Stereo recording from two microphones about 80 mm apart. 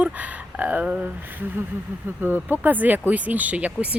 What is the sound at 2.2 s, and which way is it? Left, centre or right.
Speech, right.